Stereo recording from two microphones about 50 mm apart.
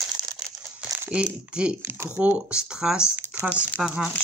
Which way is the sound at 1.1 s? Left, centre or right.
Right.